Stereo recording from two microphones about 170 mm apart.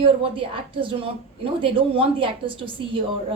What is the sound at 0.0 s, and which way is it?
A woman's voice, 30° right (ahead or behind).